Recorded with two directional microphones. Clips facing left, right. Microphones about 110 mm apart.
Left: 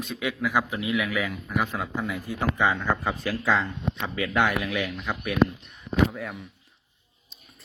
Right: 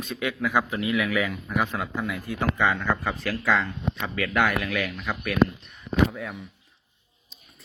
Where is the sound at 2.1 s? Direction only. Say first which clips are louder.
Right 1 dB; 15° left (ahead or behind).